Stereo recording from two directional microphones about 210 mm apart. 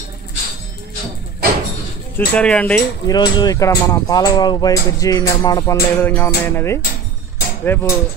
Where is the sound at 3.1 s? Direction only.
20° left (ahead or behind).